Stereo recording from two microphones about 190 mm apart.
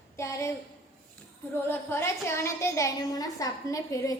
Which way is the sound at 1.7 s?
10° left (ahead or behind).